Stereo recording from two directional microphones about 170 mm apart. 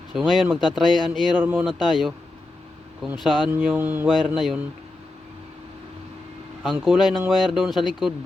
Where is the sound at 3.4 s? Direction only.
10° right (ahead or behind).